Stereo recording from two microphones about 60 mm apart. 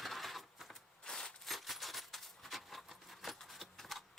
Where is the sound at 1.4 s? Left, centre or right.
Centre.